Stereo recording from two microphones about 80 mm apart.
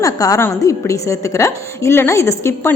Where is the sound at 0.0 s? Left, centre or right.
Left.